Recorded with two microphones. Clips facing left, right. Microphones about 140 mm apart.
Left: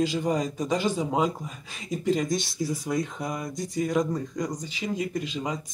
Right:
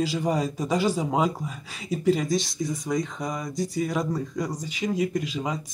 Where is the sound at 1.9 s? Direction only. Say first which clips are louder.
Right 2 dB; 5° right (ahead or behind).